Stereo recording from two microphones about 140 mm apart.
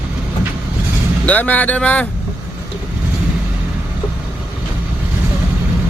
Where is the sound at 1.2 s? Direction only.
10° left (ahead or behind).